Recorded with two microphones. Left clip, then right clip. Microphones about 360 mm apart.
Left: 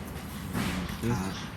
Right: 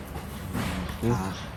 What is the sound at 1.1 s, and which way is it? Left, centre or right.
Speech, centre.